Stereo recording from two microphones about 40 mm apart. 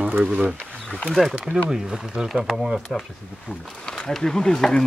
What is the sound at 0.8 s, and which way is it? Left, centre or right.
Speech, centre.